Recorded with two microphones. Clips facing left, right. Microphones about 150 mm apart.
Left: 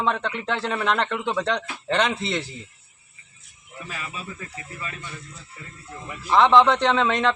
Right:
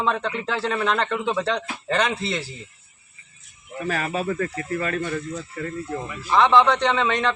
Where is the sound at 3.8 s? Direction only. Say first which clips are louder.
Right 11 dB; 60° right (ahead or behind).